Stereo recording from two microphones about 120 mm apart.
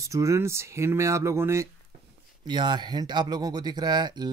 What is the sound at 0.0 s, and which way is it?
Speech, 25° right (ahead or behind).